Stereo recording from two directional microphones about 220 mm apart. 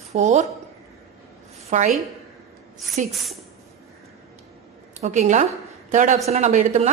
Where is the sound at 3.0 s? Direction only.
35° right (ahead or behind).